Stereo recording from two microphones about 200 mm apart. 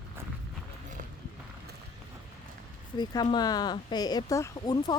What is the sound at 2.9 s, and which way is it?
Speech, 20° left (ahead or behind).